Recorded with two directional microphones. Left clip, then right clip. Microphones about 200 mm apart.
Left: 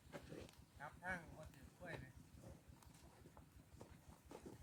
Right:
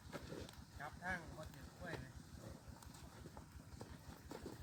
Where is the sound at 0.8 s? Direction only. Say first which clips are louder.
Right 3 dB; 35° left (ahead or behind).